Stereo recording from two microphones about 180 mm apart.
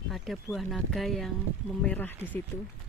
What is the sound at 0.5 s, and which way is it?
Speech, centre (ahead or behind).